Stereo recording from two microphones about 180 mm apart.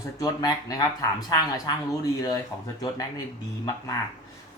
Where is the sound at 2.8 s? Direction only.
20° left (ahead or behind).